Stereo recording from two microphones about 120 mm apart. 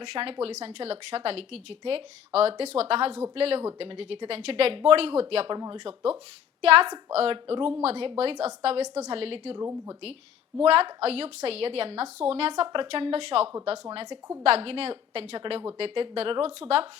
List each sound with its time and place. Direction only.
0.1 s a woman's voice: 55° right (ahead or behind)
5.5 s speech: 40° right (ahead or behind)
5.8 s a woman's voice: 50° right (ahead or behind)
9.6 s speech: 25° right (ahead or behind)
10.6 s a woman's voice: 55° right (ahead or behind)
12.6 s a woman's voice: 45° right (ahead or behind)